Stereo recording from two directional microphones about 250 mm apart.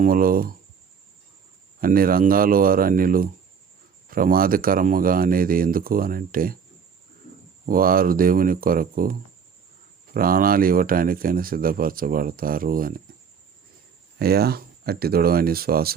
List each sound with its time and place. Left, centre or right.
0.0 s speech: right
1.8 s speech: right
7.7 s speech: right
14.2 s speech: right